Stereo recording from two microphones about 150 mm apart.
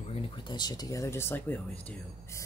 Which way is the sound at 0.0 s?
45° left (ahead or behind).